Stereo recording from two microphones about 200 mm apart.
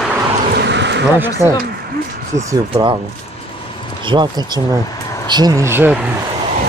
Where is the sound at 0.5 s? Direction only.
60° right (ahead or behind).